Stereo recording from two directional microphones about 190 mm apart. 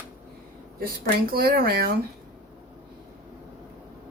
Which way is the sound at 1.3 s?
55° right (ahead or behind).